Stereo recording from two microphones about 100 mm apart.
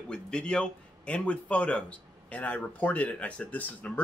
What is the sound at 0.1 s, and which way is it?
A man's voice, 10° left (ahead or behind).